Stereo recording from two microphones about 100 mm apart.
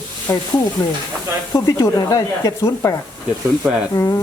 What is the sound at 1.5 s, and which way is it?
Speech, 40° left (ahead or behind).